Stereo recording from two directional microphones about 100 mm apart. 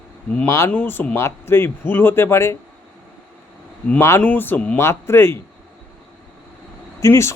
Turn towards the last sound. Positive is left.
turn(degrees=25)  # may be behind; listen again after turning